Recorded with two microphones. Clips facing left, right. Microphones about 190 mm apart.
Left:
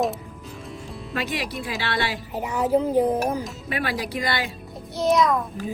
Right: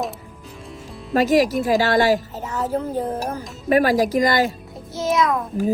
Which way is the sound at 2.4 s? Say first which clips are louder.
Left 3 dB; 15° left (ahead or behind).